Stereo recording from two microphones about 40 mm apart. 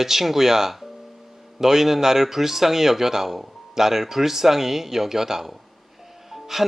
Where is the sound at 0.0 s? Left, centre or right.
Centre.